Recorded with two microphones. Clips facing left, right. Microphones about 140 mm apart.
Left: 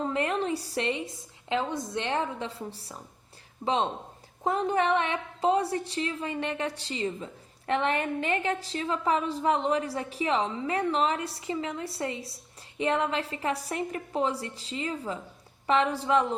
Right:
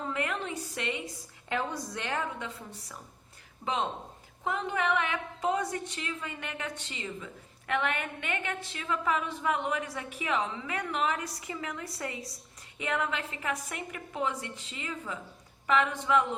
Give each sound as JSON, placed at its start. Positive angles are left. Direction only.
{"t": 0.1, "sound": "a woman's voice", "side_deg": 30}
{"t": 4.4, "sound": "a woman's voice", "side_deg": 35}